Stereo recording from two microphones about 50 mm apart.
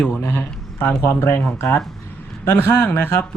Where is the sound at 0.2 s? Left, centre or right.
Left.